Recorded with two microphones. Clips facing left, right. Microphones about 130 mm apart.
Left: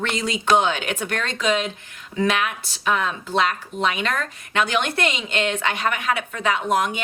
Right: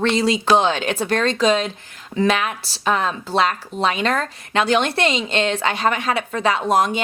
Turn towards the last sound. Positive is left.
turn(degrees=-35)  # may be behind; listen again after turning